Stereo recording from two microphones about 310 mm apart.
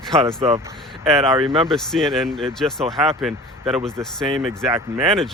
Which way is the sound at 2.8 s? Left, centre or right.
Centre.